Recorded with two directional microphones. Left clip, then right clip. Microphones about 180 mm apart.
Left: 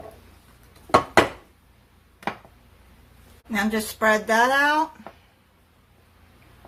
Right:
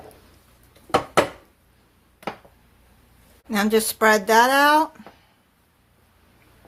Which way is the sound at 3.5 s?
60° right (ahead or behind).